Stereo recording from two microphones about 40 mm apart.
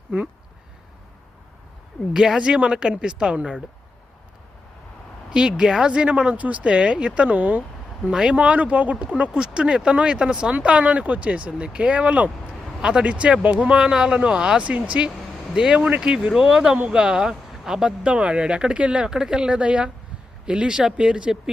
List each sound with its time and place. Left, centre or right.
2.1 s speech: centre
5.3 s speech: right
5.9 s speech: right
8.1 s speech: centre
8.4 s speech: right
9.3 s speech: right
10.5 s speech: right
12.8 s speech: right
14.6 s speech: right
15.5 s speech: centre
18.0 s speech: right
19.0 s speech: centre